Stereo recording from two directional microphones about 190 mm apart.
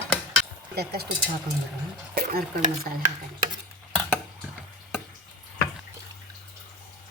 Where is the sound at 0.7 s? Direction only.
55° right (ahead or behind).